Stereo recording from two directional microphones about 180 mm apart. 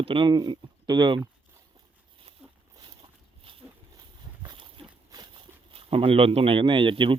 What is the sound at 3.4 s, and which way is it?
Horse, 30° right (ahead or behind).